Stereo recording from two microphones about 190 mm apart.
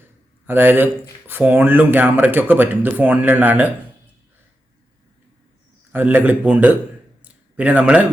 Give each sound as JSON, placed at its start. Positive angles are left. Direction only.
{"t": 0.4, "sound": "speech", "side_deg": -10}
{"t": 5.9, "sound": "speech", "side_deg": -10}